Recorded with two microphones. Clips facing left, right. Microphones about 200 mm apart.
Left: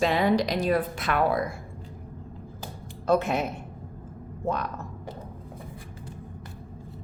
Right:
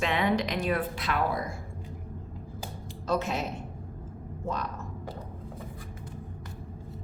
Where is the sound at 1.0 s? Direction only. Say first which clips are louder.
Left 5 dB; 60° left (ahead or behind).